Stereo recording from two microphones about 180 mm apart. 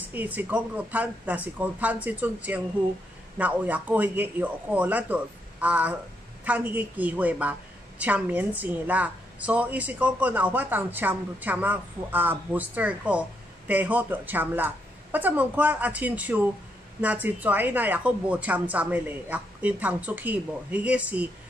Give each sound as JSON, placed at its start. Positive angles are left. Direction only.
{"t": 0.0, "sound": "a woman's voice", "side_deg": -10}